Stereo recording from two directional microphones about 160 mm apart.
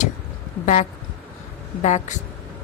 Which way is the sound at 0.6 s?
45° left (ahead or behind).